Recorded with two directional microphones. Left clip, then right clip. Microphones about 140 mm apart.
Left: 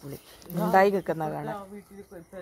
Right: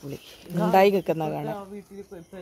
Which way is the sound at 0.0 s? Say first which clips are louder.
Right 4 dB; 15° right (ahead or behind).